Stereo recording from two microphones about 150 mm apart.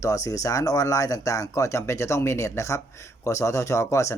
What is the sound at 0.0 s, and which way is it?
Speech, 20° left (ahead or behind).